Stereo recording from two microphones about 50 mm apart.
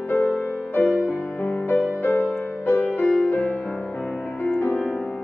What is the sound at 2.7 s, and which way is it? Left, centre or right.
Music, left.